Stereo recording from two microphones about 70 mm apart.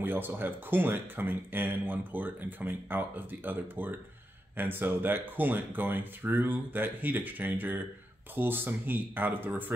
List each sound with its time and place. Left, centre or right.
0.0 s speech: right